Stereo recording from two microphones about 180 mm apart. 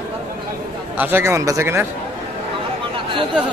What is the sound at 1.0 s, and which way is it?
Speech, 10° right (ahead or behind).